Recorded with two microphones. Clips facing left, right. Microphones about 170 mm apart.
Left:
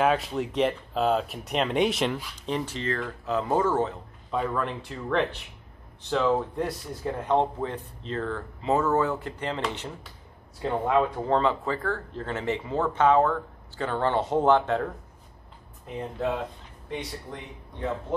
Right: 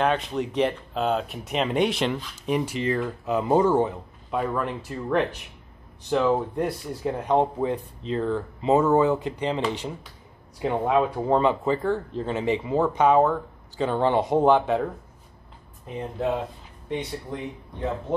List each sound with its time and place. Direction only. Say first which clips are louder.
0.0 s speech: even; 5° left (ahead or behind)
2.4 s speech: right 5 dB; 10° right (ahead or behind)